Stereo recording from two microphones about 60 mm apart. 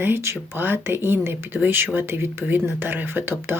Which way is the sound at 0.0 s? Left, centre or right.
Right.